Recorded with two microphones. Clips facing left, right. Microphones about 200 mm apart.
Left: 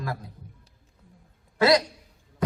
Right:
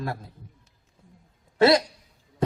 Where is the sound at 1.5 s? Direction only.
25° right (ahead or behind).